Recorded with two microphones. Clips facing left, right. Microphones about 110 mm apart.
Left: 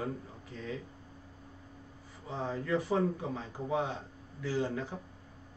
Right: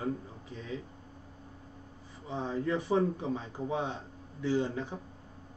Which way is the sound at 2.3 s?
20° right (ahead or behind).